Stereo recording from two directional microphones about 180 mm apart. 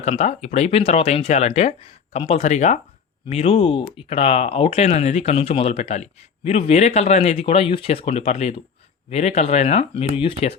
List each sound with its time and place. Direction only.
0.0 s speech: 40° left (ahead or behind)